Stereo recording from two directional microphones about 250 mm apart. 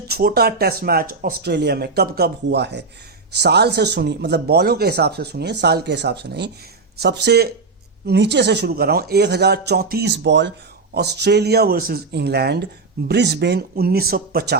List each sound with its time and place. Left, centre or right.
0.1 s speech: right